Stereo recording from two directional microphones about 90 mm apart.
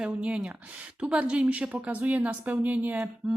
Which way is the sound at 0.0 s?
15° right (ahead or behind).